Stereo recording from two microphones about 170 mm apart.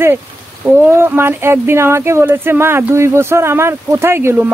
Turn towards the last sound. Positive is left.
turn(degrees=-10)  # may be behind; listen again after turning